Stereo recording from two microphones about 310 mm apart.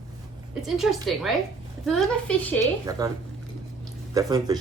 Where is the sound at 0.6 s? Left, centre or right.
Centre.